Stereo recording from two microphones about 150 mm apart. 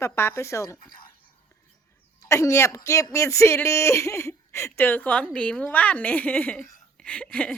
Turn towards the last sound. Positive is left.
turn(degrees=10)  # may be behind; listen again after turning